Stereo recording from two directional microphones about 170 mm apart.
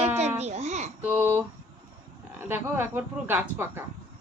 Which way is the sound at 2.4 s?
15° right (ahead or behind).